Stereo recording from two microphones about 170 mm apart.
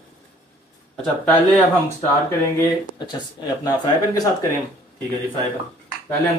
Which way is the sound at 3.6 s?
20° left (ahead or behind).